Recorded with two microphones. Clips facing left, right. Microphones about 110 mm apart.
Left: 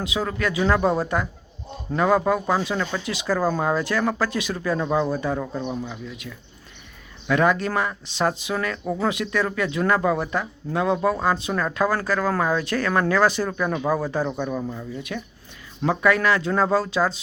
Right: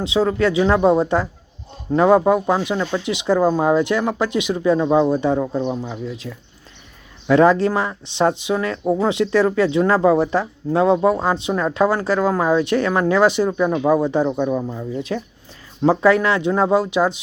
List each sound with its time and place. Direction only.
0.0 s speech: 25° right (ahead or behind)